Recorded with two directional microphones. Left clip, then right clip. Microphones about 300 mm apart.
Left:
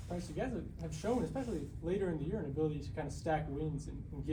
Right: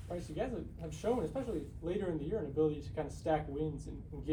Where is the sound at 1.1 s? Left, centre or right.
Right.